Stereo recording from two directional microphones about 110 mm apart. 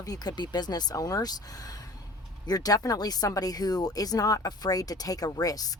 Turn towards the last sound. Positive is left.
turn(degrees=35)  # may be behind; listen again after turning